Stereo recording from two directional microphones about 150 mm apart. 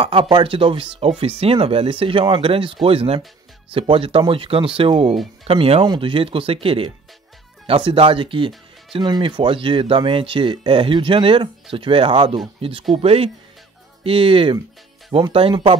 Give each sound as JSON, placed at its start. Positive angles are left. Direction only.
{"t": 0.0, "sound": "speech", "side_deg": -35}